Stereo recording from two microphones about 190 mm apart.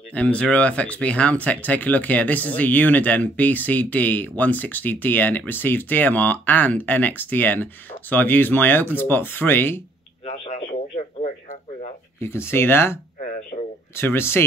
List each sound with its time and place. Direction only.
0.1 s speech: 5° left (ahead or behind)
10.2 s radio: 40° left (ahead or behind)
12.2 s speech: 15° left (ahead or behind)
13.2 s a sound: 45° left (ahead or behind)
13.9 s speech: 15° left (ahead or behind)